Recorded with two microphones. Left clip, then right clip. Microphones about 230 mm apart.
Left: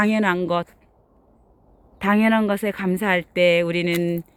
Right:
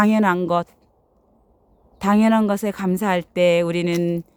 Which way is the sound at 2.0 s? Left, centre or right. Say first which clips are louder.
Right 1 dB; centre.